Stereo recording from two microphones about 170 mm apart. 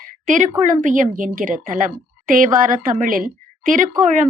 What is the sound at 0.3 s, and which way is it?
A woman's voice, 50° right (ahead or behind).